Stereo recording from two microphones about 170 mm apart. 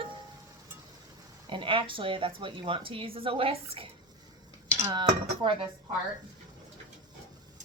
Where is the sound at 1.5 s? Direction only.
30° right (ahead or behind).